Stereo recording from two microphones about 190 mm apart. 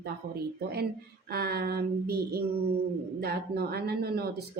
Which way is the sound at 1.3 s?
55° right (ahead or behind).